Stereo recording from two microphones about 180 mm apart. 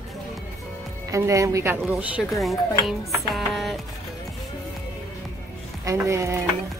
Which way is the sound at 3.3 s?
Centre (ahead or behind).